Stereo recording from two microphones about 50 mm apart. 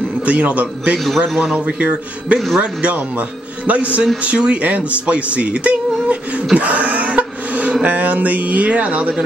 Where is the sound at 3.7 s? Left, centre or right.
Right.